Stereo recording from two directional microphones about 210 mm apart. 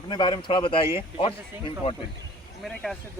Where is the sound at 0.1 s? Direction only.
20° left (ahead or behind).